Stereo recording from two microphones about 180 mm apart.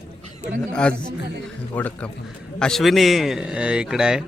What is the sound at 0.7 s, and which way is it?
A man's voice, 5° left (ahead or behind).